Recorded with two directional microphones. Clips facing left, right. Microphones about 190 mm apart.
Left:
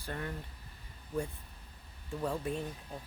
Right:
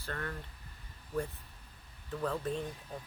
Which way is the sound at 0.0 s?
15° left (ahead or behind).